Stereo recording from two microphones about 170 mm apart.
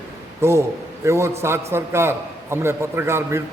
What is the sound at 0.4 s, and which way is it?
A man's voice, 15° right (ahead or behind).